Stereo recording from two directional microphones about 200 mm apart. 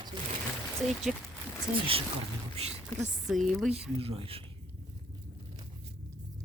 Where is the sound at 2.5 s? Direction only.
30° right (ahead or behind).